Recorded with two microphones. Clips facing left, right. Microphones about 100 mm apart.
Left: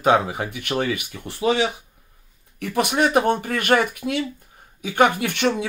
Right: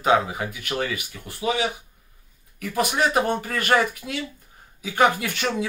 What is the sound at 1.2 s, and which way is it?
Speech, 30° left (ahead or behind).